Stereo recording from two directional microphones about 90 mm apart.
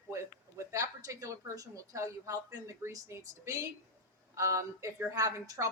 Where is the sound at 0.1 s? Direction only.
35° right (ahead or behind).